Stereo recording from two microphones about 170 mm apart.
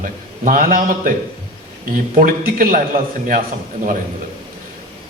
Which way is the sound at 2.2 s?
55° right (ahead or behind).